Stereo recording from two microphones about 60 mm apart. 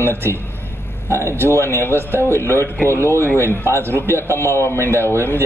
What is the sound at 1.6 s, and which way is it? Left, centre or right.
Speech, right.